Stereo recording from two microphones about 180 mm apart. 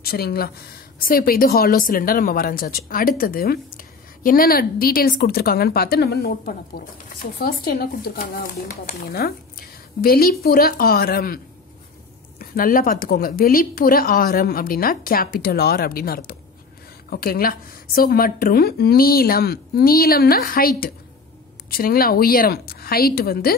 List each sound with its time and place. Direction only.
0.0 s a woman's voice: 60° left (ahead or behind)